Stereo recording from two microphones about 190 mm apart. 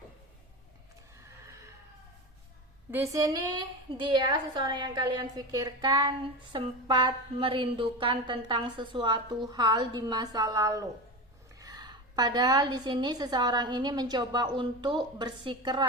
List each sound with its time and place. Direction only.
2.9 s a woman's voice: 15° right (ahead or behind)